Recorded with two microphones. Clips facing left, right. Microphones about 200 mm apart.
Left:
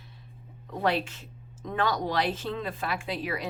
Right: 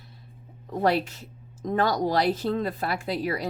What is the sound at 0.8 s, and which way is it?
Speech, 40° right (ahead or behind).